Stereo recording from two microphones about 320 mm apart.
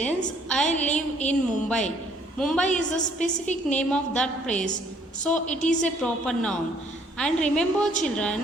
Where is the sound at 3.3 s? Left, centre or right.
Left.